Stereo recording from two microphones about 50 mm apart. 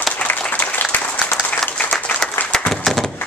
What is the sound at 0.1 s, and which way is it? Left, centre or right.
Applause, left.